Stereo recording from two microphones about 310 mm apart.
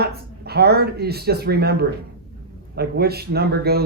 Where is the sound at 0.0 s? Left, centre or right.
Right.